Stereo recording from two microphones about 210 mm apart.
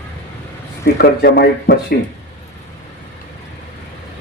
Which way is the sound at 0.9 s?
50° left (ahead or behind).